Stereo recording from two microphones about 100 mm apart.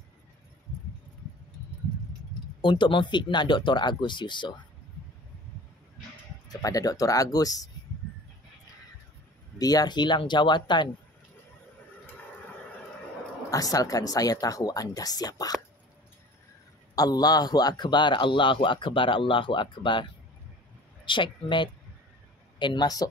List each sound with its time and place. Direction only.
2.6 s speech: 55° left (ahead or behind)
6.5 s speech: 35° left (ahead or behind)
9.6 s speech: 40° left (ahead or behind)
13.5 s speech: 35° left (ahead or behind)
16.9 s speech: 40° left (ahead or behind)